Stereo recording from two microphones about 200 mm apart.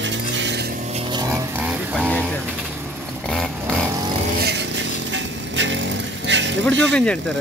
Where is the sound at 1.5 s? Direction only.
5° right (ahead or behind).